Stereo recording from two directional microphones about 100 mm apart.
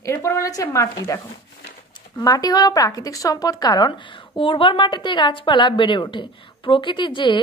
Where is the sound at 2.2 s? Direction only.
40° left (ahead or behind).